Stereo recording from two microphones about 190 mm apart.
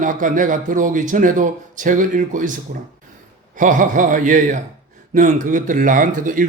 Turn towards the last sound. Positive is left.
turn(degrees=-45)  # may be behind; listen again after turning